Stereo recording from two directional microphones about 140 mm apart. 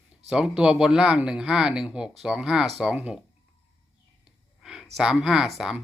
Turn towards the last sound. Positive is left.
turn(degrees=-5)  # may be behind; listen again after turning